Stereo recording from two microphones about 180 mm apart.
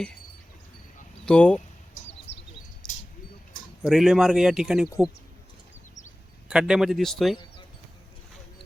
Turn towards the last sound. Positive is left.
turn(degrees=0)  # may be behind; listen again after turning